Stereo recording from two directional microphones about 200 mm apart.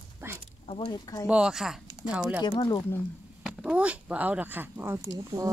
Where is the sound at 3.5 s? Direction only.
5° right (ahead or behind).